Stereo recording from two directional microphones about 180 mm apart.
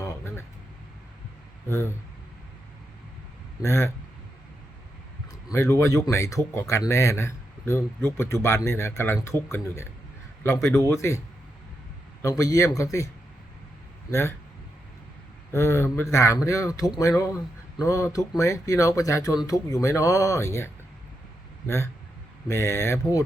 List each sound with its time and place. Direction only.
0.0 s a sound: 15° left (ahead or behind)
3.6 s speech: 15° left (ahead or behind)
5.5 s speech: 15° left (ahead or behind)
12.2 s speech: 20° left (ahead or behind)
14.1 s speech: 15° left (ahead or behind)
15.5 s speech: 15° left (ahead or behind)
22.4 s speech: 15° left (ahead or behind)